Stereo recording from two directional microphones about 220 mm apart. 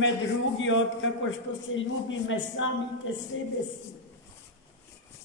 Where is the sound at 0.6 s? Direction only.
60° left (ahead or behind).